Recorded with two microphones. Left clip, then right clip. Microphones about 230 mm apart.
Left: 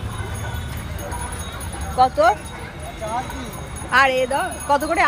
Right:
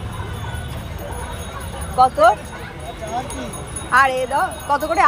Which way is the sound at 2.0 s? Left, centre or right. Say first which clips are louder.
Right 3 dB; left.